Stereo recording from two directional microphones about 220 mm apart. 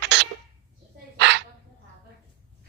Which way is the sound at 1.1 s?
50° right (ahead or behind).